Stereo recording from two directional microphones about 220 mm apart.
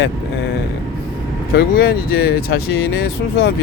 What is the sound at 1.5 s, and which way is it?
Speech, 45° left (ahead or behind).